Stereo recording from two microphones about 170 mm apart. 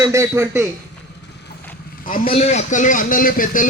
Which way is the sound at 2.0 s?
50° left (ahead or behind).